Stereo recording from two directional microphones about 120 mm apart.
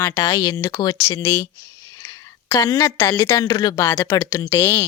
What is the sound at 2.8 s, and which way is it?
Speech, 25° left (ahead or behind).